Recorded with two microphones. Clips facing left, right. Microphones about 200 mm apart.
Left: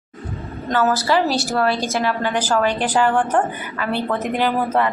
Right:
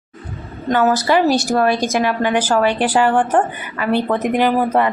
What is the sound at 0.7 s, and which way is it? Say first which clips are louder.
A woman's voice: right 3 dB; 15° right (ahead or behind).